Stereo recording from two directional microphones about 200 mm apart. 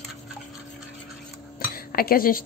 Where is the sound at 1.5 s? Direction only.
50° left (ahead or behind).